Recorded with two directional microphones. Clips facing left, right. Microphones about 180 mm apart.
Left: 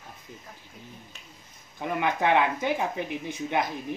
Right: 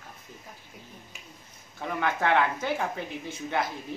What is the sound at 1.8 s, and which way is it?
Speech, 15° left (ahead or behind).